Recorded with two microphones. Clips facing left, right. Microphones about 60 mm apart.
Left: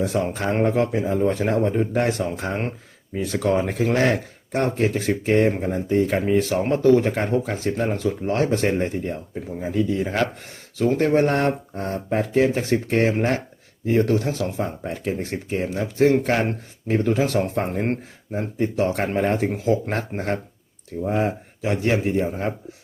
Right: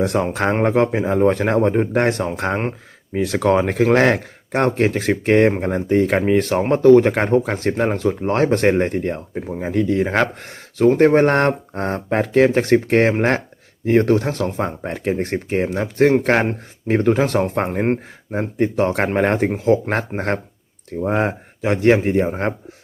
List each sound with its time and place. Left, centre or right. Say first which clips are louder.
0.0 s speech: right 4 dB; right
0.6 s speech: right 2 dB; right
3.9 s speech: right 5 dB; right
19.5 s speech: right 5 dB; right
19.9 s speech: right 4 dB; right